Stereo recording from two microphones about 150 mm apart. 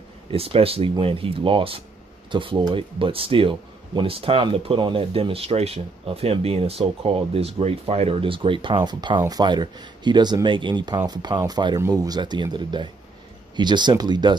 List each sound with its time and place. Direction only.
0.3 s speech: 40° right (ahead or behind)